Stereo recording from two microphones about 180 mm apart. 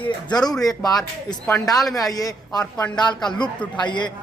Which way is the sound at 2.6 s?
5° left (ahead or behind).